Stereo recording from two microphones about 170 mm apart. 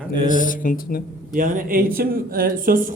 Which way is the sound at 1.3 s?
55° right (ahead or behind).